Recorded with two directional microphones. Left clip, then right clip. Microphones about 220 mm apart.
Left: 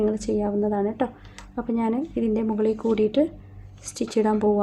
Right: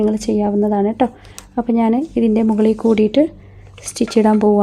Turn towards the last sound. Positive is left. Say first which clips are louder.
# right 8 dB
turn(degrees=-30)  # may be behind; listen again after turning